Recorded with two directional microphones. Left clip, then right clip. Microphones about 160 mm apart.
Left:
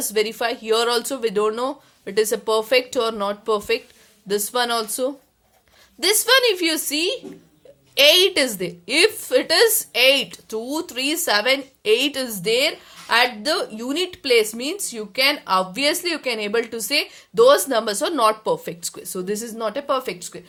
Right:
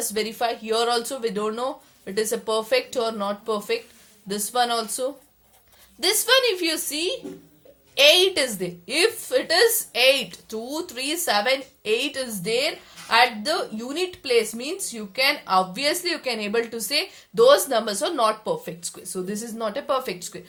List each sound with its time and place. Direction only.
0.1 s a woman's voice: 40° left (ahead or behind)